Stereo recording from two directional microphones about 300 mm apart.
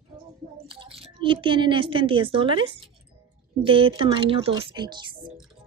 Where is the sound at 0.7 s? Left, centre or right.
Centre.